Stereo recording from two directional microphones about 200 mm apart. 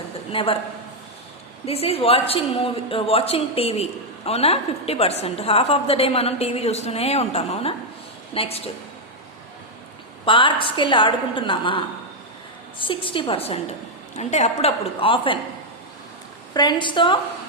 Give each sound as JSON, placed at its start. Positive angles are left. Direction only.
{"t": 0.3, "sound": "a woman's voice", "side_deg": 25}
{"t": 1.6, "sound": "a woman's voice", "side_deg": 30}
{"t": 10.2, "sound": "a woman's voice", "side_deg": 25}
{"t": 16.6, "sound": "a woman's voice", "side_deg": 20}